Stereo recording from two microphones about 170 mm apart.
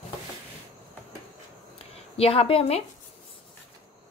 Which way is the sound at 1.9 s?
35° left (ahead or behind).